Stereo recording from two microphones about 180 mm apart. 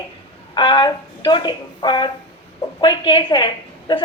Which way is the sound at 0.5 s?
25° left (ahead or behind).